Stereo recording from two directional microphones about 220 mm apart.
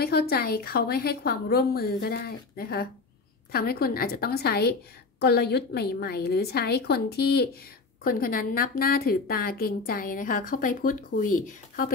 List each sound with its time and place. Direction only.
0.0 s a woman's voice: 45° left (ahead or behind)